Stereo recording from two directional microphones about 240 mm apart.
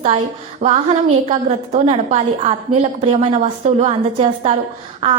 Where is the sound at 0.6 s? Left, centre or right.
Right.